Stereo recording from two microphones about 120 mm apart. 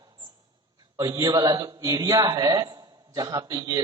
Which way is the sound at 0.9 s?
30° right (ahead or behind).